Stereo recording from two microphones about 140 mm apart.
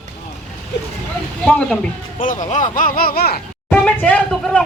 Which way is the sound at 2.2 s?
70° left (ahead or behind).